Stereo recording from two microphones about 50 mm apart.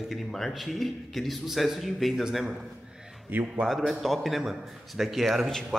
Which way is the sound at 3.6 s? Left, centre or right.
Centre.